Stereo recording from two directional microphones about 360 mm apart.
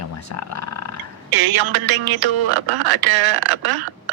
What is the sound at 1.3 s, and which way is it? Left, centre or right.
Music, right.